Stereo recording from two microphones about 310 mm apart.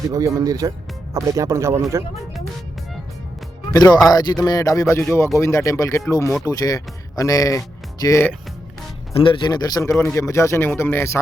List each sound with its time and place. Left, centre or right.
0.1 s speech: centre
3.7 s speech: centre